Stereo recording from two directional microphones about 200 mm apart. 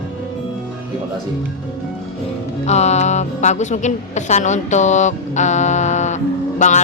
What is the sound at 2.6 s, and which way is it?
A woman's voice, 35° left (ahead or behind).